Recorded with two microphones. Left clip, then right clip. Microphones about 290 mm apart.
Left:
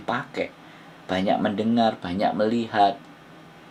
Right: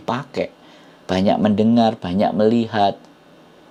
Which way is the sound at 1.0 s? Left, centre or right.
Right.